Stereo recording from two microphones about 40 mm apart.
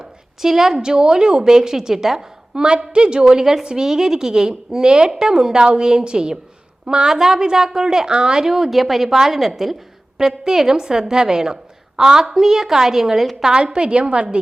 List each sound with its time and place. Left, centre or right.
0.0 s a woman's voice: centre
13.5 s a woman's voice: right